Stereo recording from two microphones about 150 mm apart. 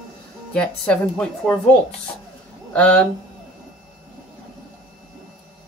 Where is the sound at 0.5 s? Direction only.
10° left (ahead or behind).